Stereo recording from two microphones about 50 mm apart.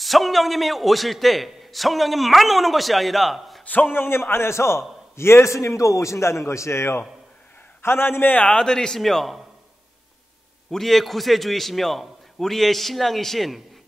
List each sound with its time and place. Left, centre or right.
0.0 s a man's voice: centre
3.9 s a man's voice: left
7.8 s a man's voice: left
8.5 s speech: centre
10.7 s a man's voice: centre